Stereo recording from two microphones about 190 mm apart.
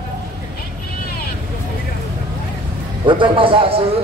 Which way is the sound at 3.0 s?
25° right (ahead or behind).